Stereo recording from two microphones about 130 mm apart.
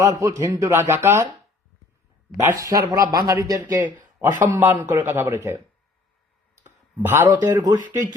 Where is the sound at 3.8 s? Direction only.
85° right.